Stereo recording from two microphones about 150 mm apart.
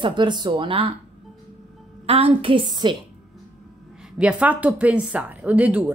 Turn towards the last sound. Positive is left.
turn(degrees=-10)  # may be behind; listen again after turning